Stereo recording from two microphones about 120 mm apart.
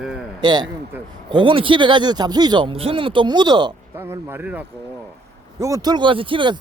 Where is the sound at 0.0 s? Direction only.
5° right (ahead or behind).